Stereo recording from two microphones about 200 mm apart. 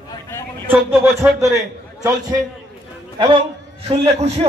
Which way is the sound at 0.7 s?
10° right (ahead or behind).